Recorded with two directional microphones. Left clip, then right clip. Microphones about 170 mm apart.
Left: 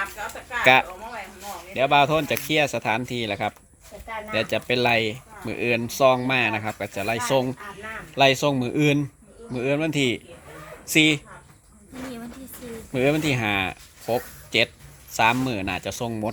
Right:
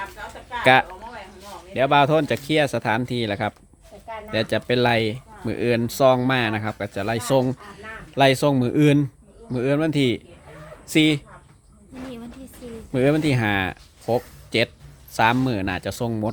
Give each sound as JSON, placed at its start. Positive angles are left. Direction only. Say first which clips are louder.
{"t": 0.6, "sound": "speech", "louder": "right 1 dB", "side_deg": -30}
{"t": 12.9, "sound": "speech", "louder": "right 2 dB", "side_deg": -35}